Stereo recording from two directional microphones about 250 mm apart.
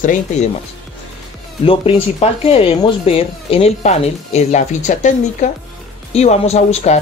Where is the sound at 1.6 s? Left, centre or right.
Left.